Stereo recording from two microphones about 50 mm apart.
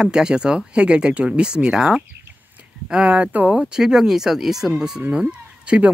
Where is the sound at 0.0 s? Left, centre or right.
Centre.